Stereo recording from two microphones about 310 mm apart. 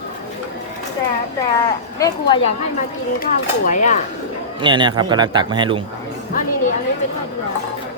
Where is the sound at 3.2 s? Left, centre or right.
Left.